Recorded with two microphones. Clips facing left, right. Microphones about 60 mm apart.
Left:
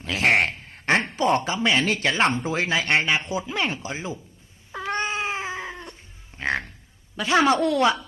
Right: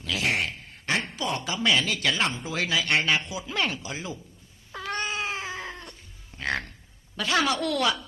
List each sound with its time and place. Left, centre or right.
0.0 s a sound: left
0.3 s a sound: left
1.5 s speech: left
3.4 s speech: centre
4.7 s cat: left
5.9 s music: left
7.2 s speech: left